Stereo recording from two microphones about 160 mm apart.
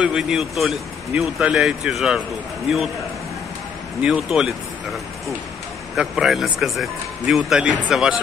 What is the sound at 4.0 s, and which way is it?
Speech, 5° right (ahead or behind).